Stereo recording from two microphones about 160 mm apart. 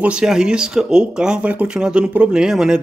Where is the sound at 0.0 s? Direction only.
5° right (ahead or behind).